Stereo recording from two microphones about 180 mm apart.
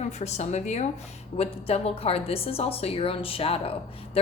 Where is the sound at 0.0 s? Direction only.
40° left (ahead or behind).